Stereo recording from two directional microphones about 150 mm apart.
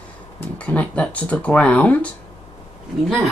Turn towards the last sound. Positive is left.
turn(degrees=0)  # may be behind; listen again after turning